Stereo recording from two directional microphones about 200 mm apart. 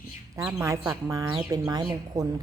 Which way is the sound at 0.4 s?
15° right (ahead or behind).